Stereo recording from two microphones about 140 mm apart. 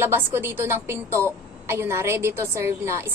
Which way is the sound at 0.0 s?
15° right (ahead or behind).